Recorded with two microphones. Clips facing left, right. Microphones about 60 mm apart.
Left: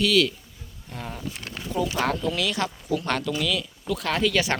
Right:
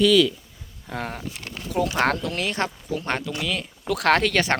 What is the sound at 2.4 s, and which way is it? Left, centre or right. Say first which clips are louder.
Speech: right 1 dB; right.